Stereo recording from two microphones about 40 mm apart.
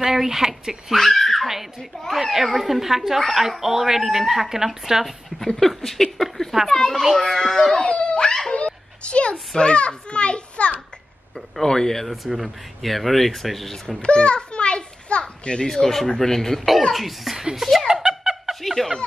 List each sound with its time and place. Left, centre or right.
0.0 s a sound: centre
0.9 s giggle: centre
1.8 s speech: centre
5.3 s a sound: centre
5.7 s a child's voice: centre
7.8 s giggle: left
8.5 s a sound: left
9.6 s a child's voice: left
11.6 s a child's voice: centre
12.1 s speech: centre
13.8 s children playing: left
15.6 s a child's voice: centre
17.8 s a sound: centre